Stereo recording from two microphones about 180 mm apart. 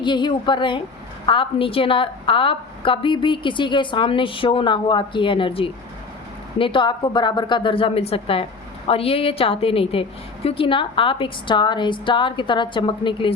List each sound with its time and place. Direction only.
0.0 s a woman's voice: 25° left (ahead or behind)